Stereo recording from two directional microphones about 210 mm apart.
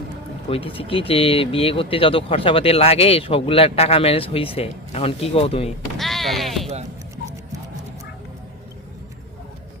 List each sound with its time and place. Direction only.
0.5 s speech: 25° left (ahead or behind)
6.0 s music: centre (ahead or behind)